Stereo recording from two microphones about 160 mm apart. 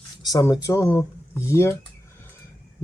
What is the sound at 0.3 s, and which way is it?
Speech, 25° left (ahead or behind).